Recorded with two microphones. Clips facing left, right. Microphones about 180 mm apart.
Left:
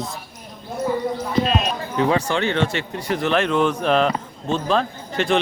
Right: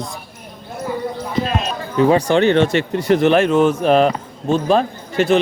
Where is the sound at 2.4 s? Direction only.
60° right (ahead or behind).